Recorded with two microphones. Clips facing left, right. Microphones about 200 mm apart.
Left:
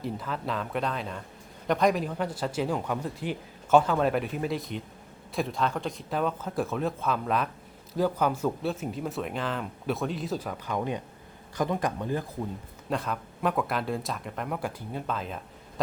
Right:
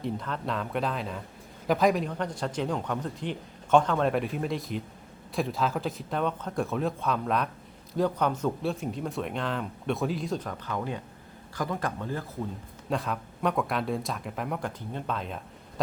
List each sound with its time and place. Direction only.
0.0 s a man's voice: 5° left (ahead or behind)
12.9 s speech: centre (ahead or behind)